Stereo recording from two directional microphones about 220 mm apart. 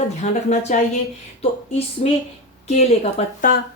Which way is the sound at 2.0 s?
30° left (ahead or behind).